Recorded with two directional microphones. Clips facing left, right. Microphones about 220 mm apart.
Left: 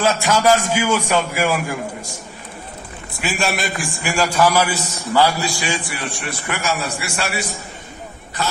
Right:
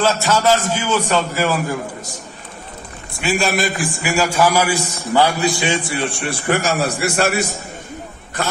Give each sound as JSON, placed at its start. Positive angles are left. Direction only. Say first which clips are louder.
{"t": 0.0, "sound": "a man's voice", "louder": "even", "side_deg": 10}
{"t": 3.2, "sound": "a man's voice", "louder": "right 4 dB", "side_deg": 0}
{"t": 6.7, "sound": "a man's voice", "louder": "right 5 dB", "side_deg": -45}